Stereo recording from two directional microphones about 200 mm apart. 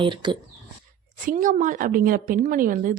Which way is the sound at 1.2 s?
40° right (ahead or behind).